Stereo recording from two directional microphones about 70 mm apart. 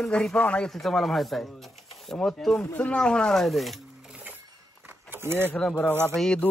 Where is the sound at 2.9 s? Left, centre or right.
Centre.